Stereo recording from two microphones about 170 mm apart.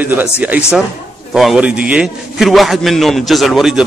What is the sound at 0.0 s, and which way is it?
A man's voice, 10° right (ahead or behind).